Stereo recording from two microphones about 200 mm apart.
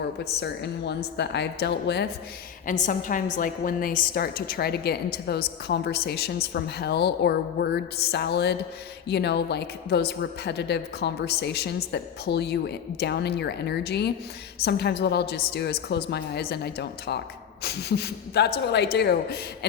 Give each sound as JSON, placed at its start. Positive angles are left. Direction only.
{"t": 0.3, "sound": "a woman's voice", "side_deg": 55}
{"t": 2.6, "sound": "a woman's voice", "side_deg": 40}